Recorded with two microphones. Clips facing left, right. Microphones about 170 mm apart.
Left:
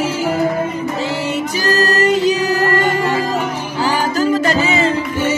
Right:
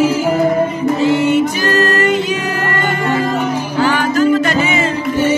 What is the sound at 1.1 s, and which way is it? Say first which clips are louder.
Music: right 7 dB; 35° left (ahead or behind).